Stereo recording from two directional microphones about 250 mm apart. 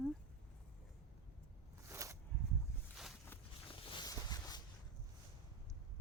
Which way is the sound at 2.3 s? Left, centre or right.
Centre.